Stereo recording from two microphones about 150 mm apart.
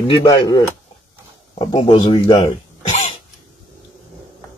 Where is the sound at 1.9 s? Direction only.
35° left (ahead or behind).